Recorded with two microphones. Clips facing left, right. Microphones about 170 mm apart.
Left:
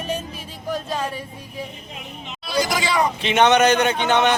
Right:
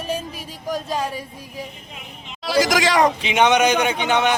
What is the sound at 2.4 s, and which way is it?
Speech, 90° right.